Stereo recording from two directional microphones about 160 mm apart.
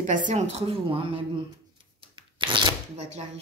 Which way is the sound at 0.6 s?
30° right (ahead or behind).